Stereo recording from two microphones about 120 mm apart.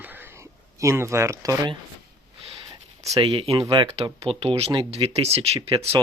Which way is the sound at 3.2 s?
50° right (ahead or behind).